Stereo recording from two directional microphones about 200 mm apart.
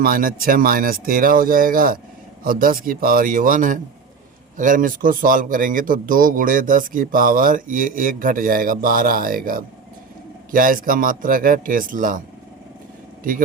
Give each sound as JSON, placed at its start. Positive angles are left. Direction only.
{"t": 0.0, "sound": "a man's voice", "side_deg": -45}